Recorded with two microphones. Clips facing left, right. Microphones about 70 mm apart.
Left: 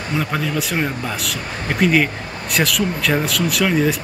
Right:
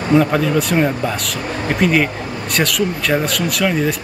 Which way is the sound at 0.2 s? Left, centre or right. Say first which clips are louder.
Right 6 dB; centre.